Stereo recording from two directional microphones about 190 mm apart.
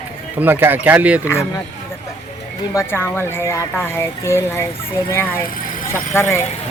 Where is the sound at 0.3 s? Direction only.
10° right (ahead or behind).